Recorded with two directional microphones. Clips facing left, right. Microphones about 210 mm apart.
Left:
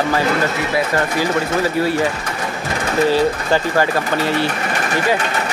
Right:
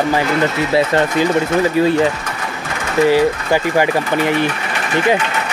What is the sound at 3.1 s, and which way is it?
Speech, 15° right (ahead or behind).